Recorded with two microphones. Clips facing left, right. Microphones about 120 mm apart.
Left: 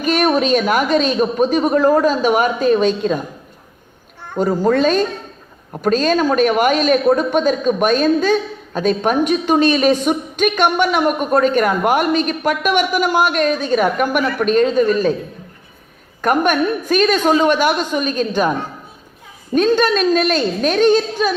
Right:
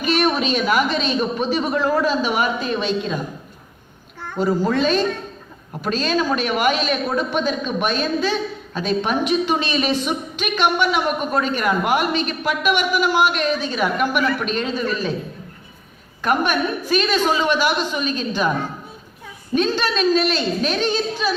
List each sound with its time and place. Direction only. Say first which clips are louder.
0.0 s a woman's voice: left 4 dB; 45° left (ahead or behind)
4.4 s a woman's voice: left 4 dB; 45° left (ahead or behind)
16.2 s a woman's voice: left 4 dB; 45° left (ahead or behind)
19.5 s a woman's voice: left 6 dB; 50° left (ahead or behind)